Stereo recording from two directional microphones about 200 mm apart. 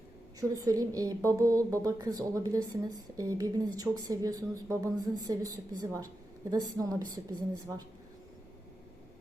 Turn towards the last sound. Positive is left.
turn(degrees=-20)  # may be behind; listen again after turning